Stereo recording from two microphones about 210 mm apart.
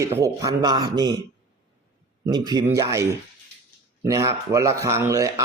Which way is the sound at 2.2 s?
20° right (ahead or behind).